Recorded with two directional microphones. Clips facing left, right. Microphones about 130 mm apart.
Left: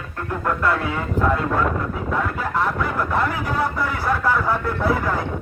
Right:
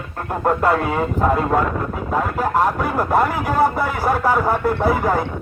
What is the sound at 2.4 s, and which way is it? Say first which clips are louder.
Speech: right 4 dB; 45° right (ahead or behind).